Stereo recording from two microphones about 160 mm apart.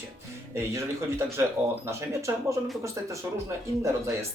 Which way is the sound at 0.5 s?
15° right (ahead or behind).